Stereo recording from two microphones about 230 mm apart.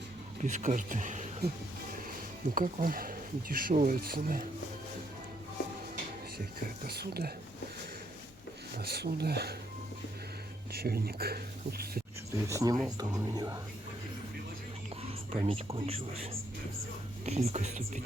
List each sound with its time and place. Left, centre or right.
0.4 s speech: right
2.6 s speech: right
6.4 s speech: right
8.8 s speech: right
10.7 s speech: right
12.5 s speech: centre
15.0 s speech: right